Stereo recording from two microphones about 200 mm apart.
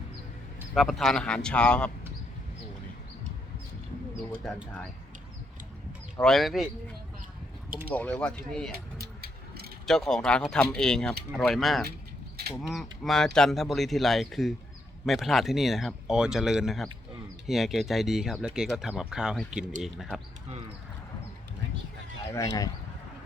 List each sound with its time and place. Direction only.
0.7 s speech: centre (ahead or behind)
4.4 s speech: 5° left (ahead or behind)
6.2 s speech: centre (ahead or behind)
7.9 s speech: 5° left (ahead or behind)
9.0 s ratchet: 50° right (ahead or behind)
9.8 s speech: centre (ahead or behind)
22.3 s speech: 15° left (ahead or behind)